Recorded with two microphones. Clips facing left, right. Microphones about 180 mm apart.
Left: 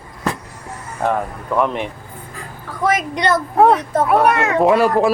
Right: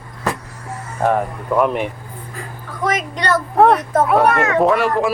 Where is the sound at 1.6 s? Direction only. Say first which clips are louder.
Right 2 dB; 5° right (ahead or behind).